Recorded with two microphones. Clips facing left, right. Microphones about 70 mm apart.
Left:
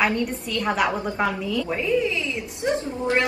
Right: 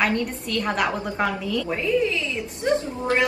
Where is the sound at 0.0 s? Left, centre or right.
Centre.